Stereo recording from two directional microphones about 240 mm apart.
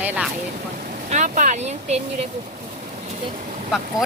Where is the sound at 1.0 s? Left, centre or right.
Right.